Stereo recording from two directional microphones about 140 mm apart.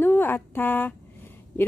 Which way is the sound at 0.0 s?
15° left (ahead or behind).